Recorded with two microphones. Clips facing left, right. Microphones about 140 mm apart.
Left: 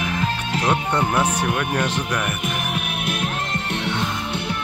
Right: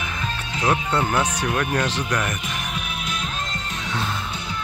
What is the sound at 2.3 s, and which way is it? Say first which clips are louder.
Music: left 4 dB; 60° left (ahead or behind).